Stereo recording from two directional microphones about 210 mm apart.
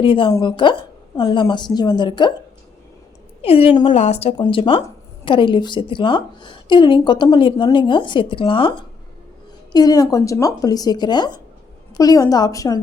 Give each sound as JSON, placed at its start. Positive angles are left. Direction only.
{"t": 0.0, "sound": "a woman's voice", "side_deg": 25}
{"t": 3.4, "sound": "a woman's voice", "side_deg": 25}